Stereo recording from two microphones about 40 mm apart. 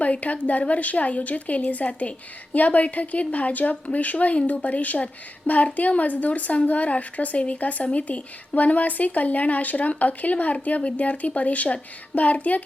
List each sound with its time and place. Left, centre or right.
0.0 s a woman's voice: left